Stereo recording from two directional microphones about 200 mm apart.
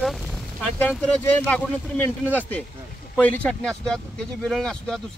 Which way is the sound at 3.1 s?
5° left (ahead or behind).